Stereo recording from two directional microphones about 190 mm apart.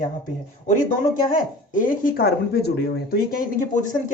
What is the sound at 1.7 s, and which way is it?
Speech, 45° left (ahead or behind).